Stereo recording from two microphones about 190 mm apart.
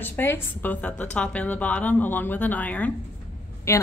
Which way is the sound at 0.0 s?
10° left (ahead or behind).